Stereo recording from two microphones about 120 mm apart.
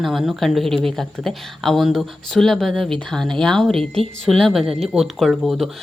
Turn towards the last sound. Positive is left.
turn(degrees=0)  # may be behind; listen again after turning